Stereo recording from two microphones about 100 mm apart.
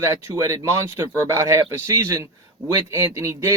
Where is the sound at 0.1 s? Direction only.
30° right (ahead or behind).